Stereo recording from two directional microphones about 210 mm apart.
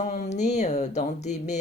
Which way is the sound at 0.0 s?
40° left (ahead or behind).